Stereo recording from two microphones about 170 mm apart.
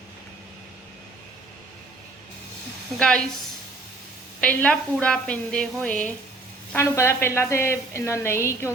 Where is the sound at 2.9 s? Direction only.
5° left (ahead or behind).